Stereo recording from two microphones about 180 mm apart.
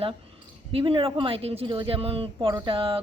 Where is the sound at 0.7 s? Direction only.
30° right (ahead or behind).